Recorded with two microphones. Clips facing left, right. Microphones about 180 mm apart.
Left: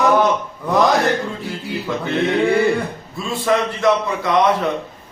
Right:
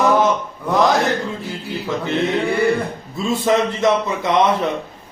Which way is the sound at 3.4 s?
20° right (ahead or behind).